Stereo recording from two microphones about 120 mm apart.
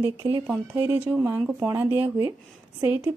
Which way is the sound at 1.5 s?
20° right (ahead or behind).